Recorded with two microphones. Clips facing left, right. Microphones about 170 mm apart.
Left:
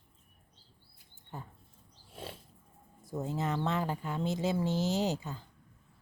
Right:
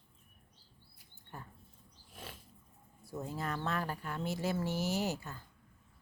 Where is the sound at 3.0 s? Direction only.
20° left (ahead or behind).